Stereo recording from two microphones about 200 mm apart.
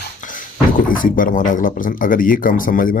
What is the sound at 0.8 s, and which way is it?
Speech, 45° left (ahead or behind).